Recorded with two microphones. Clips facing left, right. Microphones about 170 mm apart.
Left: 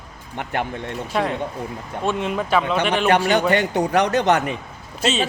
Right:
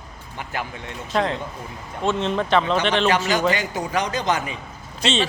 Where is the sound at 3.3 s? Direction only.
60° left (ahead or behind).